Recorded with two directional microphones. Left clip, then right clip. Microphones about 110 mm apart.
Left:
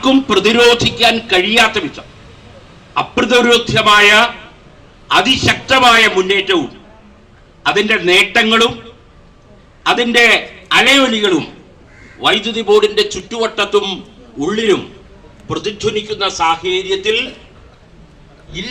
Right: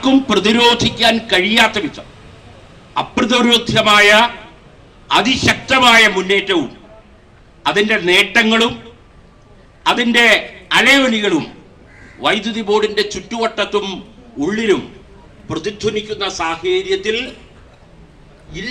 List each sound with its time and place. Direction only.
0.0 s speech: 35° right (ahead or behind)
3.2 s a man's voice: 30° right (ahead or behind)
7.7 s a man's voice: 30° right (ahead or behind)
10.0 s a man's voice: 30° right (ahead or behind)